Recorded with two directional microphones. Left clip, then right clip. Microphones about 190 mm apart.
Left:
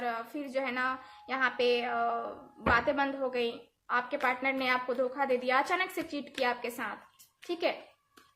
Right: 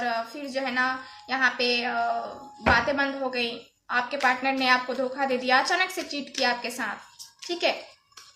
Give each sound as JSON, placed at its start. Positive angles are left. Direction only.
{"t": 0.0, "sound": "a woman's voice", "side_deg": 45}